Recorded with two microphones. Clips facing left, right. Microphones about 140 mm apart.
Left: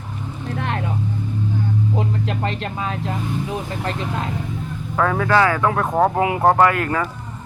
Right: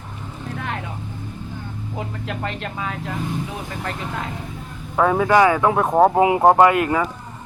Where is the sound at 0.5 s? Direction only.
35° left (ahead or behind).